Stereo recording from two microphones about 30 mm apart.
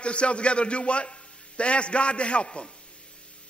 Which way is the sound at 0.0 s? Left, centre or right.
Left.